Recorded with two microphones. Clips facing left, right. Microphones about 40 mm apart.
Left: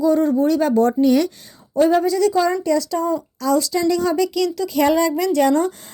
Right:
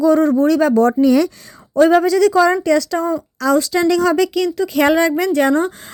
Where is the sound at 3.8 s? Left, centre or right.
Right.